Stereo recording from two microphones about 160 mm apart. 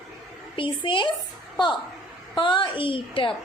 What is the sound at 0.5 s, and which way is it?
Speech, 30° left (ahead or behind).